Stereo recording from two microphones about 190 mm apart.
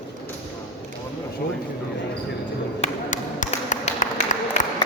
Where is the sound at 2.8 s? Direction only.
40° left (ahead or behind).